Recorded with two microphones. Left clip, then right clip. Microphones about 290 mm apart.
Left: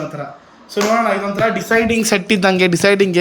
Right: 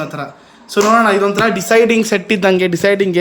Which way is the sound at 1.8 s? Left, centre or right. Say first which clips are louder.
Right 2 dB; centre.